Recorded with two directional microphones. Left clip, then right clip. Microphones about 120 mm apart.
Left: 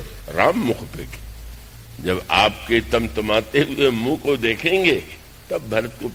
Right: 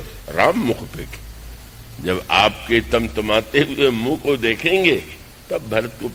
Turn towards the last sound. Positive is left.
turn(degrees=-35)  # may be behind; listen again after turning